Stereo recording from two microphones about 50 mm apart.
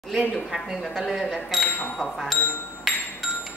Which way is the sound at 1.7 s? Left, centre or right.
Left.